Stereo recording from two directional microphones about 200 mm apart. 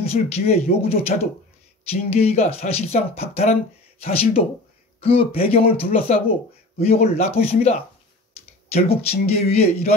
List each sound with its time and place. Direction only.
0.1 s speech: 30° left (ahead or behind)
5.0 s speech: 30° left (ahead or behind)